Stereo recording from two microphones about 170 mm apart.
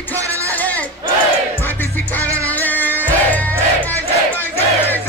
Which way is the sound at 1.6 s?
10° left (ahead or behind).